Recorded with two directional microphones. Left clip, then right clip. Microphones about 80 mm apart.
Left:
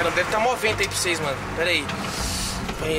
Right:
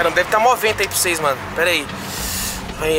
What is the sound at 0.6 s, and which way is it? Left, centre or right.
Speech, right.